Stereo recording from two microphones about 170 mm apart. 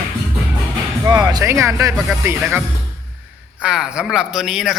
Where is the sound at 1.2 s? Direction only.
15° right (ahead or behind).